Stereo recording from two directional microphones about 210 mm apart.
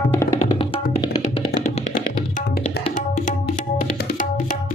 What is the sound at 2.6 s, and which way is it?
Tabla, 45° left (ahead or behind).